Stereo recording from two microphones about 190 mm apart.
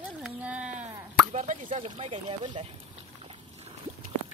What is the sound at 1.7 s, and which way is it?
Speech, 30° right (ahead or behind).